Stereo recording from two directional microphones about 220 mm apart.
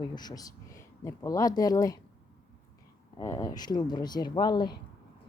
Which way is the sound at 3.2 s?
15° left (ahead or behind).